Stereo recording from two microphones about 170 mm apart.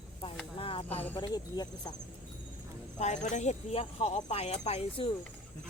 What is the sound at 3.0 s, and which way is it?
Speech, 45° left (ahead or behind).